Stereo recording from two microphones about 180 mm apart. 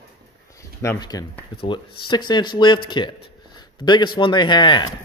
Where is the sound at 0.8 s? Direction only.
20° left (ahead or behind).